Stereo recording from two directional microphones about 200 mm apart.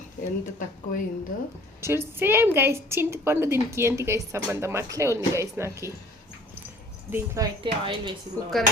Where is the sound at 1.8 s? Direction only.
10° right (ahead or behind).